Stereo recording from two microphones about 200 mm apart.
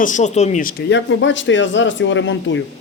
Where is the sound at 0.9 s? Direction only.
70° left (ahead or behind).